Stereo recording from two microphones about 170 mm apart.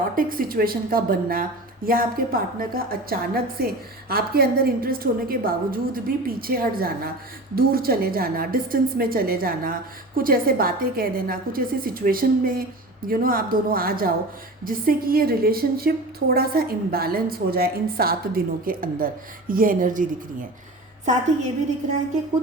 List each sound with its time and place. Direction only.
0.2 s a woman's voice: 55° right (ahead or behind)